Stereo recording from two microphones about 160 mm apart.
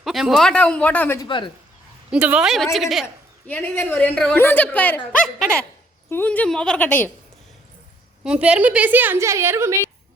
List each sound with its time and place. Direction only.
0.0 s a woman's voice: centre (ahead or behind)
1.2 s speech: 30° left (ahead or behind)
2.0 s a woman's voice: 10° right (ahead or behind)
3.4 s a woman's voice: 10° left (ahead or behind)
8.2 s a woman's voice: 5° right (ahead or behind)